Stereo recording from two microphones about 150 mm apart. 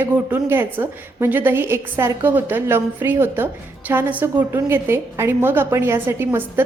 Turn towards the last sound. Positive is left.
turn(degrees=-15)  # may be behind; listen again after turning